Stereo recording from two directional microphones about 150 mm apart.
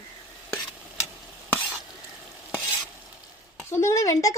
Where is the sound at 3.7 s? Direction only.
20° left (ahead or behind).